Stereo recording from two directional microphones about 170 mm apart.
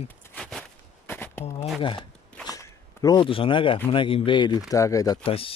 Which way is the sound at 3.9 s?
30° left (ahead or behind).